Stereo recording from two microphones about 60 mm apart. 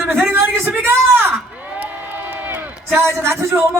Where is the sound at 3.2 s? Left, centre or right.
Right.